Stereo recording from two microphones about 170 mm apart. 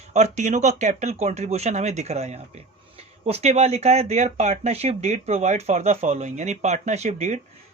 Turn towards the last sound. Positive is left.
turn(degrees=-40)  # may be behind; listen again after turning